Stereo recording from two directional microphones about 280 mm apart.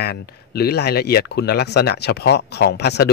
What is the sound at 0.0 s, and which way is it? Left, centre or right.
Speech, left.